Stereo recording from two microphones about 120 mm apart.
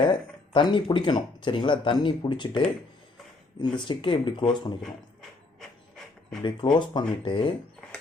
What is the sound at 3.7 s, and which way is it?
Speech, 45° left (ahead or behind).